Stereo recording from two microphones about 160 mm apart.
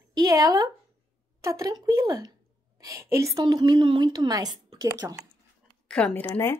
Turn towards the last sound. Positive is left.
turn(degrees=15)  # may be behind; listen again after turning